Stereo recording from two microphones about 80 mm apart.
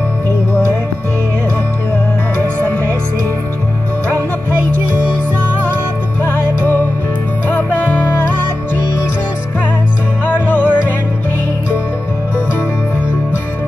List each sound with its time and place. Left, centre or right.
6.2 s music: left
10.2 s music: left